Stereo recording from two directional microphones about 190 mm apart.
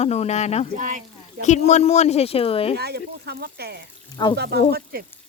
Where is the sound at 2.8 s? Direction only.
55° right (ahead or behind).